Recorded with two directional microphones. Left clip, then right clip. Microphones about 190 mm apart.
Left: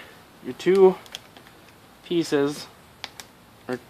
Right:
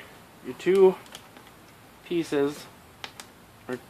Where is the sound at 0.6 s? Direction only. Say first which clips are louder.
Left 3 dB; 45° left (ahead or behind).